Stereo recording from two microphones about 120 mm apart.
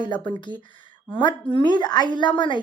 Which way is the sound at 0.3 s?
40° left (ahead or behind).